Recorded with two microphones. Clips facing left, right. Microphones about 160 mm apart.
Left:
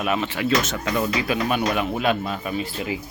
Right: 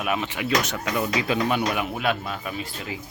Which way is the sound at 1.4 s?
15° left (ahead or behind).